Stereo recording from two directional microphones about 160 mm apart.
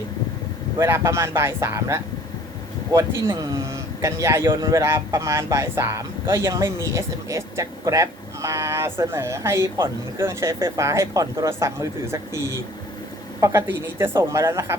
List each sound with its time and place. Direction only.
0.8 s speech: 15° right (ahead or behind)
3.2 s speech: 20° right (ahead or behind)